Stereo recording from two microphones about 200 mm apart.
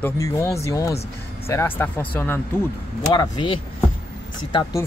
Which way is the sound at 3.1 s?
20° left (ahead or behind).